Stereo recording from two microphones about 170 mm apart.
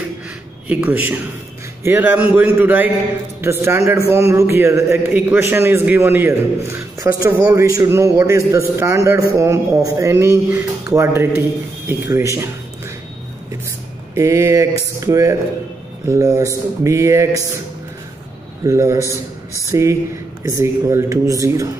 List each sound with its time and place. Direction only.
0.7 s a man's voice: 10° right (ahead or behind)
14.1 s a man's voice: 15° right (ahead or behind)
18.6 s a man's voice: 15° right (ahead or behind)